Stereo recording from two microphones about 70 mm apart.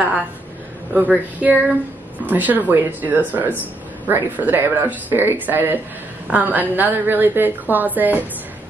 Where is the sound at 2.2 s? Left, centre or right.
Right.